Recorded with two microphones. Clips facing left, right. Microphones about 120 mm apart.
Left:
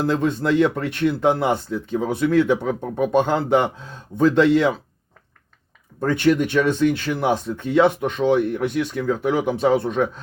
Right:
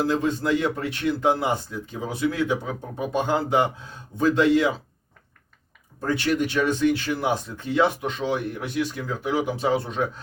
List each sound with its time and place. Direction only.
0.1 s speech: 60° left (ahead or behind)
6.0 s speech: 55° left (ahead or behind)